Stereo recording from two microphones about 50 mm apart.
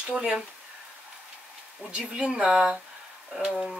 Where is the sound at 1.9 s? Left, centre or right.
Centre.